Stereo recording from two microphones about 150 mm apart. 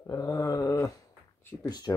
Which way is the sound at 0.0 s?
20° left (ahead or behind).